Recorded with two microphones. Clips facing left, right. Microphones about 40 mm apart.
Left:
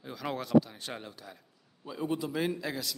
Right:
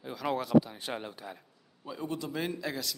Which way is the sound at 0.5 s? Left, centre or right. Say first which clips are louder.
Left 1 dB; centre.